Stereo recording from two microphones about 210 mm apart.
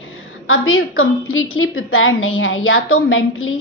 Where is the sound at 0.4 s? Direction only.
75° left (ahead or behind).